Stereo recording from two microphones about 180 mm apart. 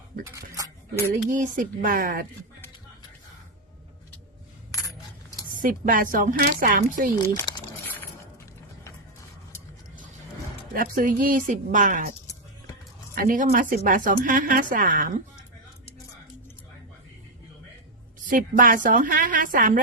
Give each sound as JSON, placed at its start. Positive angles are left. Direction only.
{"t": 0.5, "sound": "a sound", "side_deg": -20}
{"t": 1.1, "sound": "speech", "side_deg": -50}
{"t": 5.5, "sound": "speech", "side_deg": -50}
{"t": 7.3, "sound": "a sound", "side_deg": 25}
{"t": 10.8, "sound": "speech", "side_deg": -50}
{"t": 13.1, "sound": "speech", "side_deg": -50}
{"t": 18.3, "sound": "speech", "side_deg": -45}